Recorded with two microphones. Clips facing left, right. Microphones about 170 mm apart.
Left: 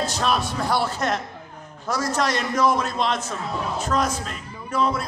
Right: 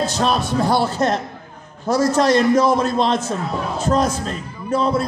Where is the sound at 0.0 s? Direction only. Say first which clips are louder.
Right 4 dB; 25° right (ahead or behind).